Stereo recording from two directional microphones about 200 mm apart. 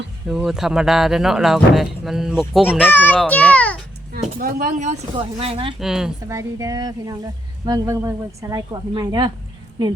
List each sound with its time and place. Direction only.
0.3 s a child's voice: centre (ahead or behind)
4.1 s a woman's voice: 45° right (ahead or behind); by 5.7 s 30° right (ahead or behind)
5.8 s speech: centre (ahead or behind)
6.2 s a woman's voice: 15° right (ahead or behind)